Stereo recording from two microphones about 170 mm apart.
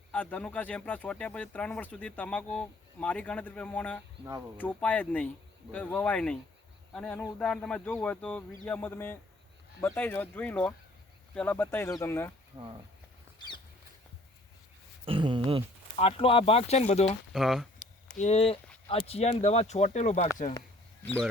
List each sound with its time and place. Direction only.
0.1 s speech: 10° left (ahead or behind)
12.5 s speech: 20° right (ahead or behind)
15.0 s speech: 30° right (ahead or behind)
16.0 s speech: 35° left (ahead or behind)
17.3 s speech: centre (ahead or behind)
17.7 s a sound: 45° left (ahead or behind)
18.9 s speech: 35° left (ahead or behind)
21.0 s speech: 10° left (ahead or behind)